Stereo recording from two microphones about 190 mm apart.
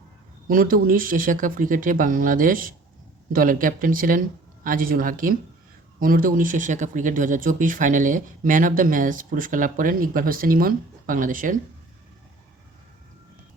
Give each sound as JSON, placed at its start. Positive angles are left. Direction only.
{"t": 0.4, "sound": "speech", "side_deg": -50}